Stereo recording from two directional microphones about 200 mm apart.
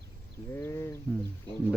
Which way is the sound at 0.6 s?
10° left (ahead or behind).